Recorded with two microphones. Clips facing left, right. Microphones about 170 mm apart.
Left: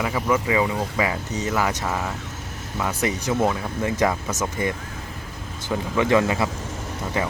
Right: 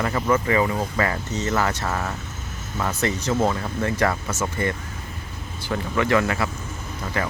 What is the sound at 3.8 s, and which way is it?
Speech, 15° left (ahead or behind).